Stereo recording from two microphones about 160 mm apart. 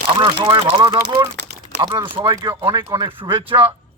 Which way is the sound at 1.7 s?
90° right.